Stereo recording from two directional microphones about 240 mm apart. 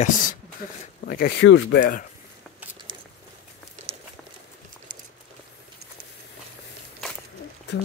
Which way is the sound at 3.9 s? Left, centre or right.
Right.